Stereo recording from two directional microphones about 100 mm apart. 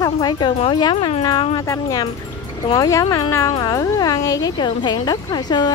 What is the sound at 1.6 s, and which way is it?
Speech, 35° left (ahead or behind).